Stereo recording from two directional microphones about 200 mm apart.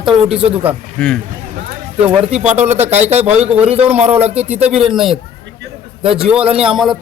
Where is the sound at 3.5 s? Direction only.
5° right (ahead or behind).